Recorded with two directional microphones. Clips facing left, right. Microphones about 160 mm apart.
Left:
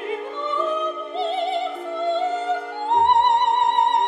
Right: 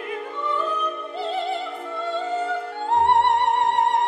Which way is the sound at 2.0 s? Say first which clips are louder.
Left 3 dB; 20° left (ahead or behind).